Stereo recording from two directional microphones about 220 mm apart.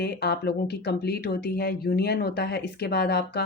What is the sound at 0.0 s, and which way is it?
Speech, 50° left (ahead or behind).